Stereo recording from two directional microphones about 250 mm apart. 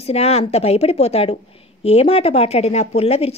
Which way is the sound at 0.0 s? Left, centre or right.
Left.